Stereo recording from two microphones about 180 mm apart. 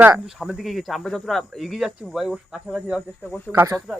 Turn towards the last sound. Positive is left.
turn(degrees=-20)  # may be behind; listen again after turning